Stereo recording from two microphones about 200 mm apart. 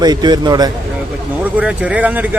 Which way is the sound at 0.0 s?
20° right (ahead or behind).